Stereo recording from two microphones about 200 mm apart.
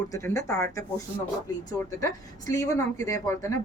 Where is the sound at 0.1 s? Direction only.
15° left (ahead or behind).